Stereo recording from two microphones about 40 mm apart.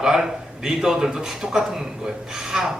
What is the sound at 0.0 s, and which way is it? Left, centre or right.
A man's voice, centre.